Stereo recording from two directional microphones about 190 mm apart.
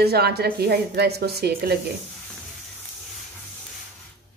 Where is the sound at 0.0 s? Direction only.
55° right (ahead or behind).